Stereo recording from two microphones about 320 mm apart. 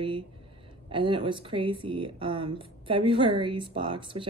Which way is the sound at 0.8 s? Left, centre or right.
Centre.